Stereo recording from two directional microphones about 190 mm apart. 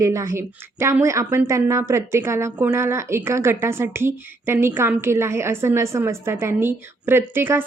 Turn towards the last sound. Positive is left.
turn(degrees=-10)  # may be behind; listen again after turning